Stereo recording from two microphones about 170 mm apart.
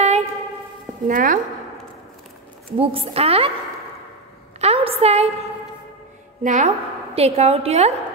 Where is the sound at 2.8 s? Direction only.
35° right (ahead or behind).